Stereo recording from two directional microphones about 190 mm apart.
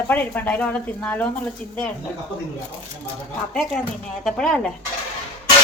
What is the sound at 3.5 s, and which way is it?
A woman's voice, centre (ahead or behind).